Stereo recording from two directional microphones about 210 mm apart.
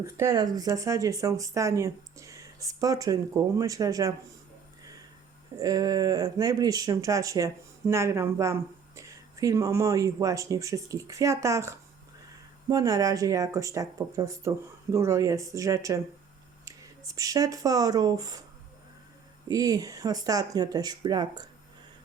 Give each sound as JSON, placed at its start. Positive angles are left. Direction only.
{"t": 0.0, "sound": "speech", "side_deg": -15}
{"t": 5.5, "sound": "speech", "side_deg": -15}
{"t": 19.5, "sound": "speech", "side_deg": -15}